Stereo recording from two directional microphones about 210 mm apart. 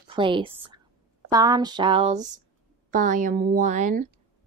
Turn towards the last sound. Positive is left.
turn(degrees=-35)  # may be behind; listen again after turning